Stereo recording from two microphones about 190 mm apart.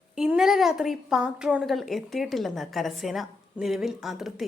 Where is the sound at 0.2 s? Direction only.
5° right (ahead or behind).